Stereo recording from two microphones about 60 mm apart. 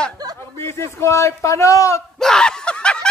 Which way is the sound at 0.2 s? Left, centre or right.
Right.